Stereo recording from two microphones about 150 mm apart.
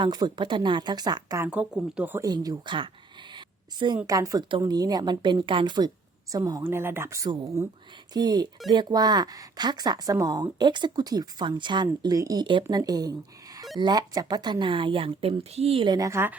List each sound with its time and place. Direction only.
0.0 s speech: 30° right (ahead or behind)
1.5 s speech: 5° right (ahead or behind)
2.2 s speech: 25° right (ahead or behind)
3.3 s a sound: 30° right (ahead or behind)
4.0 s speech: 20° right (ahead or behind)